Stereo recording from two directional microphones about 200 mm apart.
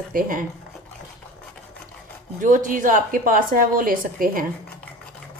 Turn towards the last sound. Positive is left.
turn(degrees=-45)  # may be behind; listen again after turning